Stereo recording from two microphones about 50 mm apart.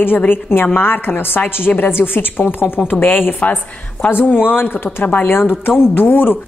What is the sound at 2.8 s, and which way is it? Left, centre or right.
Speech, left.